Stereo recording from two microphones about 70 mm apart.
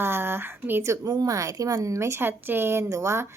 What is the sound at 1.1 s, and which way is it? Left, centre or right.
A woman's voice, right.